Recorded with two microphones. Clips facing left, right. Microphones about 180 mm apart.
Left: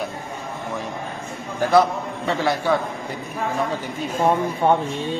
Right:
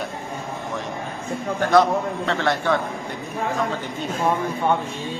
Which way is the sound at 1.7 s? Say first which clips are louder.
Even; 10° left (ahead or behind).